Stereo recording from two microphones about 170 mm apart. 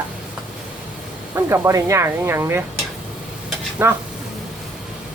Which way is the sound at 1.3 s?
15° right (ahead or behind).